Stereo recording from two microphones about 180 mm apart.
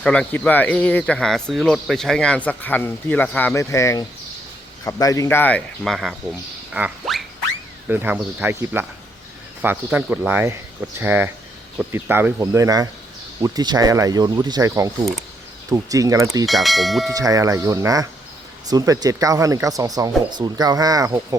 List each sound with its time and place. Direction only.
0.0 s speech: 5° left (ahead or behind)
6.7 s a sound: 5° right (ahead or behind)
7.9 s speech: 10° right (ahead or behind)
16.5 s speech: centre (ahead or behind)
17.2 s speech: 20° right (ahead or behind)